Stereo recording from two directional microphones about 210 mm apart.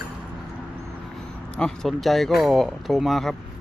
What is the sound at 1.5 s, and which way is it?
Speech, 5° left (ahead or behind).